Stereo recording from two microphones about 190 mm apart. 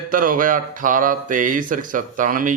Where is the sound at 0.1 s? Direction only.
45° right (ahead or behind).